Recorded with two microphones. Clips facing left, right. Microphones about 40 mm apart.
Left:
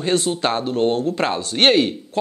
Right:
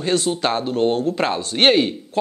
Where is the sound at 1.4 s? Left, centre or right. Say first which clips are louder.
Even; right.